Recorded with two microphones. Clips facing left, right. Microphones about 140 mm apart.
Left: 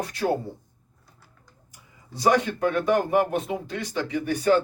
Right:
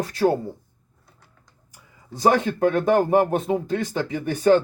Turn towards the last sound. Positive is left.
turn(degrees=-40)  # may be behind; listen again after turning